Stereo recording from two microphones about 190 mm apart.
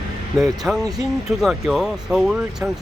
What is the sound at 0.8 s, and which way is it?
Speech, 20° right (ahead or behind).